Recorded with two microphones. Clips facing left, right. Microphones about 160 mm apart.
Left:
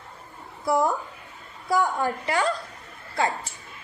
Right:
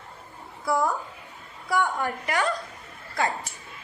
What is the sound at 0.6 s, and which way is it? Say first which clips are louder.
A woman's voice: left 2 dB; 25° left (ahead or behind).